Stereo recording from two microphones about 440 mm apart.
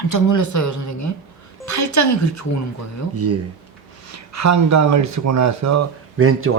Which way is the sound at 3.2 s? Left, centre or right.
Right.